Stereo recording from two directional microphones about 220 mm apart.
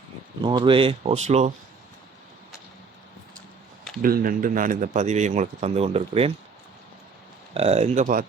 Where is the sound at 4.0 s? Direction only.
40° right (ahead or behind).